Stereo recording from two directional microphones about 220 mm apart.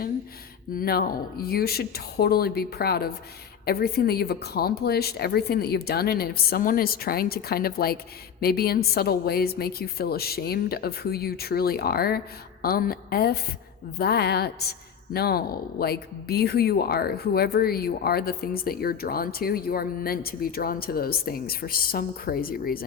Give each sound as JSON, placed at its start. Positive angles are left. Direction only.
{"t": 0.8, "sound": "a woman's voice", "side_deg": 40}